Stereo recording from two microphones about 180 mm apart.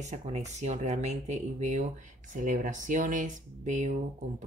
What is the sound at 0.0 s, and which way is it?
Speech, 40° right (ahead or behind).